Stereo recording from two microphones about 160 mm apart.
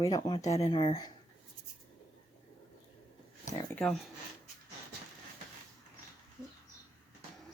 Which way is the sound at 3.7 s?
5° left (ahead or behind).